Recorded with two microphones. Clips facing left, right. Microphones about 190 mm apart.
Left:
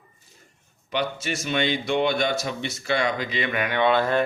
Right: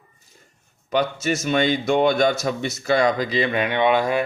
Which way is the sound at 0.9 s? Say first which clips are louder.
Right 6 dB; 45° right (ahead or behind).